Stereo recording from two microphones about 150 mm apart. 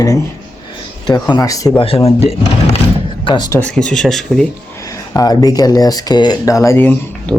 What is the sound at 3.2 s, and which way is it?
Speech, 25° left (ahead or behind).